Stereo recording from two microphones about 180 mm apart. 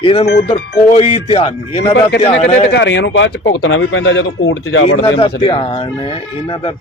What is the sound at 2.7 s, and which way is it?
Speech, 80° left.